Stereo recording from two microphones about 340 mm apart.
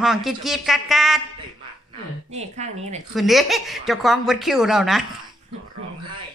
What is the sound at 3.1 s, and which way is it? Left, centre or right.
A woman's voice, centre.